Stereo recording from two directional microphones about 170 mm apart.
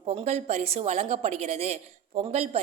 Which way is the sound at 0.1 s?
40° right (ahead or behind).